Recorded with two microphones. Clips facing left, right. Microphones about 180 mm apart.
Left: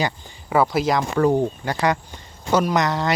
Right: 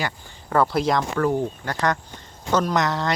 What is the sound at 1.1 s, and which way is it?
Speech, 15° left (ahead or behind).